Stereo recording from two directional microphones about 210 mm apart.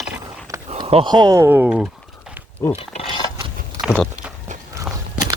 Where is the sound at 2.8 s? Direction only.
25° left (ahead or behind).